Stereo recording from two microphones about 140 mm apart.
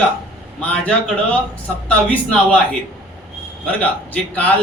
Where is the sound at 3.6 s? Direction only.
10° left (ahead or behind).